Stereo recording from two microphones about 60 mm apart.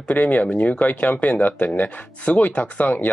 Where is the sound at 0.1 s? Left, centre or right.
Left.